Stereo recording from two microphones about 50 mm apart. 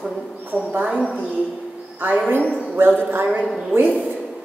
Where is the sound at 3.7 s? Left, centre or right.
Right.